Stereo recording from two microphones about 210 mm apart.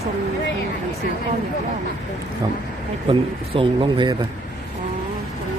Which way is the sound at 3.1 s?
25° right (ahead or behind).